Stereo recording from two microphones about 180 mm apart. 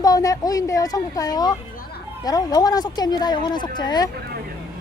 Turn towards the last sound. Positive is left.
turn(degrees=25)  # may be behind; listen again after turning